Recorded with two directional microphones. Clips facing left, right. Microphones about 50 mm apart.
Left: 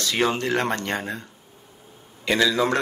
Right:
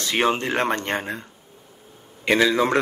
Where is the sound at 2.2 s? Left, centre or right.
Right.